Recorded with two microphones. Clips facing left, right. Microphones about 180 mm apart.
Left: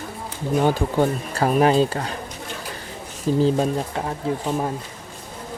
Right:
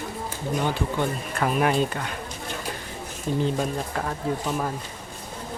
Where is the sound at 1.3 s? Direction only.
30° left (ahead or behind).